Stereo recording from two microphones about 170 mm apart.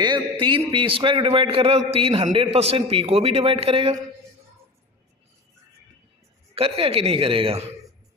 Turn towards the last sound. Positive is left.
turn(degrees=-35)  # may be behind; listen again after turning